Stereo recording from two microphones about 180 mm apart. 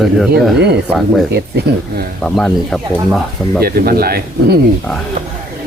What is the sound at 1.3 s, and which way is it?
Speech, 60° right (ahead or behind).